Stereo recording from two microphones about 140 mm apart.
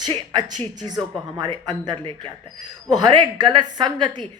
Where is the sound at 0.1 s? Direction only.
30° right (ahead or behind).